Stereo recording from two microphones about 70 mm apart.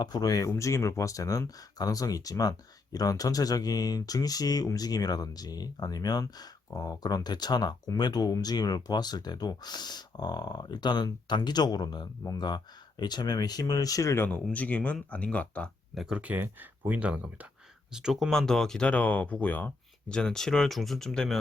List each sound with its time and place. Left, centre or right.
0.0 s speech: left
6.7 s speech: left
14.5 s speech: left
16.1 s speech: right
17.9 s speech: centre
18.9 s speech: centre
20.1 s speech: centre